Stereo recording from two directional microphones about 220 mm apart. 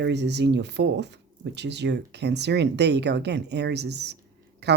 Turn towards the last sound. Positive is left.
turn(degrees=-50)  # may be behind; listen again after turning